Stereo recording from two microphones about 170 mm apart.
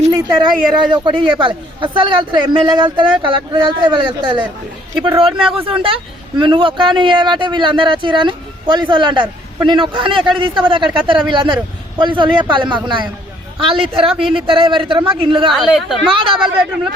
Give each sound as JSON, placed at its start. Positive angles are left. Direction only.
{"t": 0.1, "sound": "a woman's voice", "side_deg": -20}
{"t": 15.4, "sound": "a woman's voice", "side_deg": 0}